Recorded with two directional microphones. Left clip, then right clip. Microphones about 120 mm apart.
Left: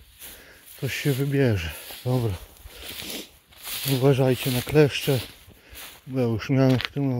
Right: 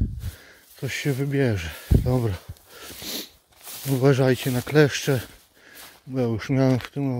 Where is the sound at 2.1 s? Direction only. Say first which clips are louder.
Even; 45° right (ahead or behind).